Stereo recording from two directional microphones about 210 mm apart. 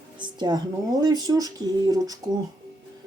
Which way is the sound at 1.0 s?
20° right (ahead or behind).